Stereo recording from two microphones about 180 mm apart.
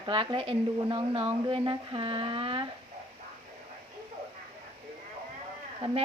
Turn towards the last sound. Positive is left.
turn(degrees=-35)  # may be behind; listen again after turning